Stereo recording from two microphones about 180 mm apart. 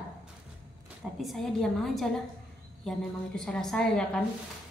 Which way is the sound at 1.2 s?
Centre (ahead or behind).